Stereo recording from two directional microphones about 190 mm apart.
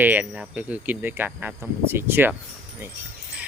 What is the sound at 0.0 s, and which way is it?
A man's voice, 10° right (ahead or behind).